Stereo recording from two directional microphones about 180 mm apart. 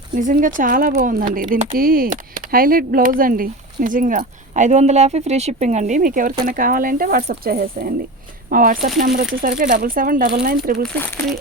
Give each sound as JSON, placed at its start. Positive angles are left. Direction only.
{"t": 0.1, "sound": "speech", "side_deg": -45}
{"t": 10.8, "sound": "speech", "side_deg": 5}